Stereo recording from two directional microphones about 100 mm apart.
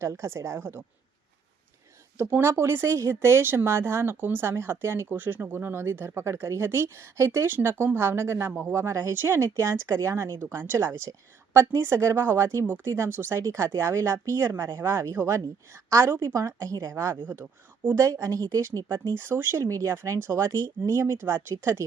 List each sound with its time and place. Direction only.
0.0 s speech: 30° right (ahead or behind)
2.1 s a woman's voice: 25° right (ahead or behind)